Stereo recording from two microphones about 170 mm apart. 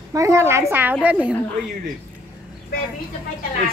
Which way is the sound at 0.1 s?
20° right (ahead or behind).